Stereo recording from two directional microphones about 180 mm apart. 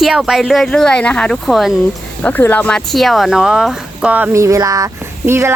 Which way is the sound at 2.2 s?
10° left (ahead or behind).